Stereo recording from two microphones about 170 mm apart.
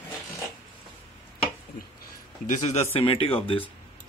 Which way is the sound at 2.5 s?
40° left (ahead or behind).